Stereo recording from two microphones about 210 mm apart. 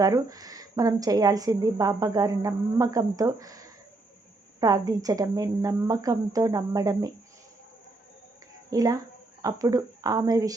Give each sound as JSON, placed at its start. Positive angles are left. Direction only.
{"t": 0.0, "sound": "a woman's voice", "side_deg": -15}
{"t": 8.7, "sound": "a woman's voice", "side_deg": -15}